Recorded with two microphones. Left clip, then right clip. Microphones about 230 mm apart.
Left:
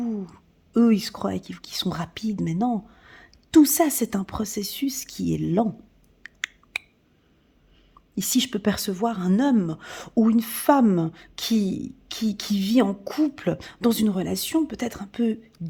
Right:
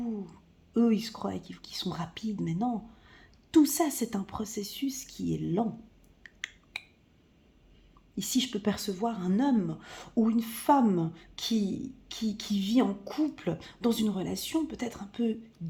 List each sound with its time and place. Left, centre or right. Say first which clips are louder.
0.0 s speech: left 7 dB; left
6.2 s a sound: left 8 dB; left
8.1 s a woman's voice: left 6 dB; left